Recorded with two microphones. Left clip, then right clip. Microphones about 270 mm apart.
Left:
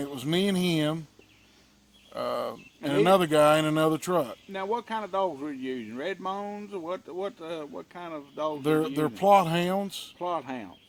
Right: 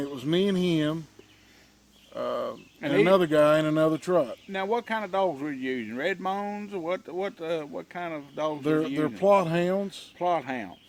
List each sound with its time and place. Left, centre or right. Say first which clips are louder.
0.0 s speech: right 2 dB; left
2.1 s speech: even; left
4.5 s speech: right 2 dB; right
8.6 s speech: left 1 dB; left
10.2 s speech: right 5 dB; right